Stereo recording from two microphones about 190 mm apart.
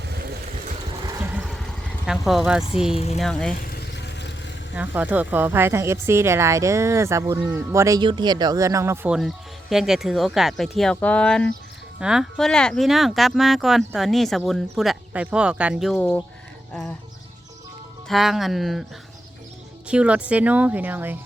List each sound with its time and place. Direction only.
1.0 s vehicle: 20° right (ahead or behind)
1.3 s vehicle: 5° right (ahead or behind)
2.0 s speech: centre (ahead or behind)
2.9 s speech: 35° left (ahead or behind)
3.2 s speech: centre (ahead or behind)
3.6 s vehicle: 55° left (ahead or behind)
4.7 s speech: 10° right (ahead or behind)
9.1 s speech: centre (ahead or behind)
16.0 s speech: 10° left (ahead or behind)
18.1 s speech: centre (ahead or behind)
19.9 s speech: 5° right (ahead or behind)